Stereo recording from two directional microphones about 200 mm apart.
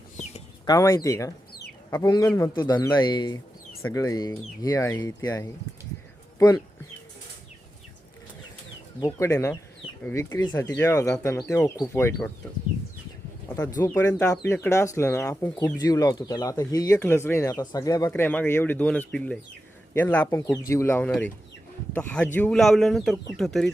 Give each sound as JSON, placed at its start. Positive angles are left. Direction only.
{"t": 0.6, "sound": "speech", "side_deg": 15}
{"t": 9.0, "sound": "speech", "side_deg": 15}
{"t": 13.5, "sound": "speech", "side_deg": 15}